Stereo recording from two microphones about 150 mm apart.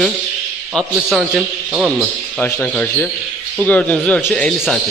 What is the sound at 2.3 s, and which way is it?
A man's voice, 10° left (ahead or behind).